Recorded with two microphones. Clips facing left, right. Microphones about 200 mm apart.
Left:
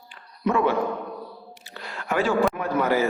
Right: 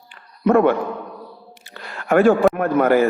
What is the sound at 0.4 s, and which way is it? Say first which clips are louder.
Speech: right 7 dB; 55° right (ahead or behind).